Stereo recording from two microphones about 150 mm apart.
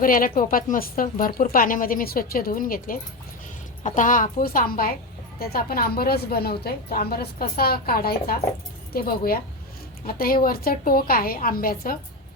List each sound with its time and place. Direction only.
0.0 s a woman's voice: 70° left (ahead or behind)
3.8 s a woman's voice: 60° left (ahead or behind)
5.4 s a woman's voice: 85° left